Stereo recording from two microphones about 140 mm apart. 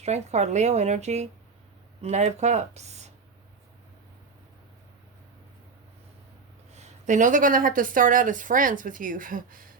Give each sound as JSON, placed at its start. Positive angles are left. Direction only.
{"t": 0.0, "sound": "a woman's voice", "side_deg": -55}
{"t": 6.7, "sound": "a woman's voice", "side_deg": -60}